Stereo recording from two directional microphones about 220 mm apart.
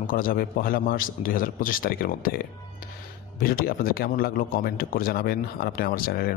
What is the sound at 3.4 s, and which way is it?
Speech, 40° left (ahead or behind).